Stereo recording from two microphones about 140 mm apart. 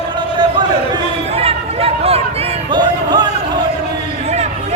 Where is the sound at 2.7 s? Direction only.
30° right (ahead or behind).